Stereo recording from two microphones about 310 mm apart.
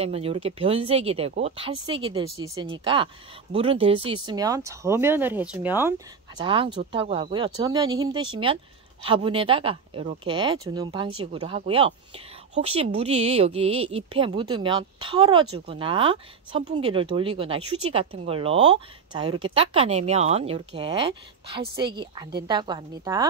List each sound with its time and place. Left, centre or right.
0.0 s speech: centre